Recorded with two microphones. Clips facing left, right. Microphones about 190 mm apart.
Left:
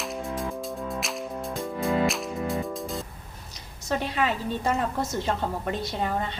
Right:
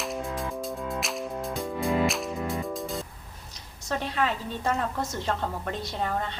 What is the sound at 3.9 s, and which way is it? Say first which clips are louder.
A woman's voice: left 2 dB; 10° left (ahead or behind).